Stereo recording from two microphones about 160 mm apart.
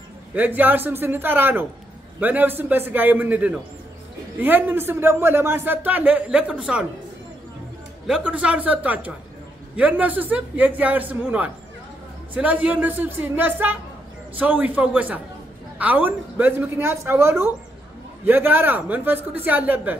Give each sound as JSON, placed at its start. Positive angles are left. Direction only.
{"t": 0.3, "sound": "a man's voice", "side_deg": -10}
{"t": 8.1, "sound": "a man's voice", "side_deg": -10}